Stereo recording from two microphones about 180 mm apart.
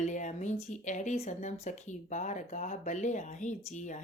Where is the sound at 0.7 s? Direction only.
40° left (ahead or behind).